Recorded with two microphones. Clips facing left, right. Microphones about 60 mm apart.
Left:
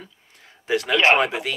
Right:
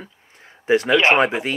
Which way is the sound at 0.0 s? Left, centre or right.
Right.